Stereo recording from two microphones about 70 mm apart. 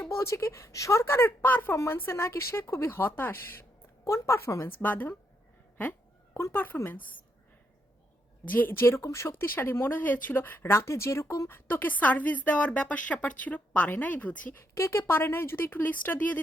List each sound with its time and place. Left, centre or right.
0.1 s a woman's voice: left
4.8 s a woman's voice: left
6.3 s a woman's voice: left
8.4 s a woman's voice: left
9.0 s a woman's voice: left
11.4 s a woman's voice: left
14.8 s a woman's voice: left